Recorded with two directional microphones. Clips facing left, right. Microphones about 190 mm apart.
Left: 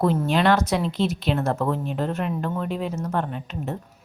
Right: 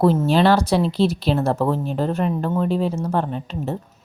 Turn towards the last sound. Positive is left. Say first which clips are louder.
# right 4 dB
turn(degrees=-30)  # may be behind; listen again after turning